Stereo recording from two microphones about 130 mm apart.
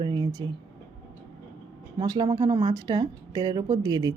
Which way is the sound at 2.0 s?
30° right (ahead or behind).